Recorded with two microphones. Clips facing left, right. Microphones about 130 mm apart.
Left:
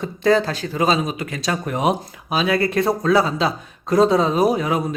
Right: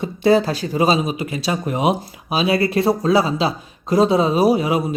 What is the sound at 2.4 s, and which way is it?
Speech, 30° right (ahead or behind).